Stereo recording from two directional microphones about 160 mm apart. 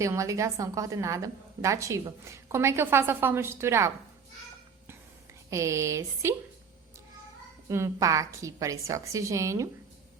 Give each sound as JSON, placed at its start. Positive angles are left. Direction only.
{"t": 0.0, "sound": "a woman's voice", "side_deg": -20}
{"t": 5.5, "sound": "a woman's voice", "side_deg": -20}
{"t": 7.7, "sound": "a woman's voice", "side_deg": -20}